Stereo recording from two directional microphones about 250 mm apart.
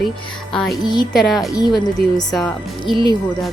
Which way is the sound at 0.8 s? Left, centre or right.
Centre.